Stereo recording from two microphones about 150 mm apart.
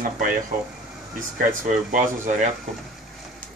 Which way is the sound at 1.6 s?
55° right (ahead or behind).